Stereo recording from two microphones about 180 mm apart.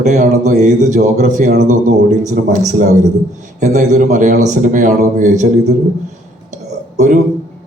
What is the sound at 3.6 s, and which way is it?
A man's voice, 40° right (ahead or behind).